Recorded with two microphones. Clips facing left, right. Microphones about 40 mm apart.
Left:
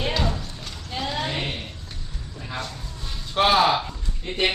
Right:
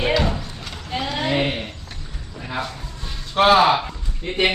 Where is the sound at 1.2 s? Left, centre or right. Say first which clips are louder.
Right 7 dB; right.